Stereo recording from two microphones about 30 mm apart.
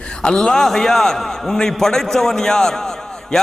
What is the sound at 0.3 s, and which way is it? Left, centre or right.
A man's voice, centre.